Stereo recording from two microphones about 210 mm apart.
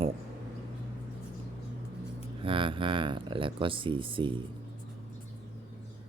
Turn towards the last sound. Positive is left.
turn(degrees=-25)  # may be behind; listen again after turning